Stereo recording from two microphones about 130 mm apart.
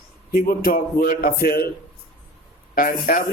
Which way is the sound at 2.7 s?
90° left.